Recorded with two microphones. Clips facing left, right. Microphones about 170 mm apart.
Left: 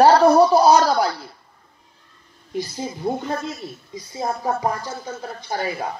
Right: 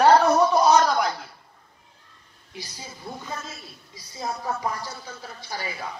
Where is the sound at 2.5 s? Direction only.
55° left (ahead or behind).